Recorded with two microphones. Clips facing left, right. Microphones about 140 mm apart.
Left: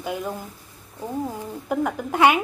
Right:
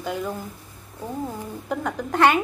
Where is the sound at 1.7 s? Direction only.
10° left (ahead or behind).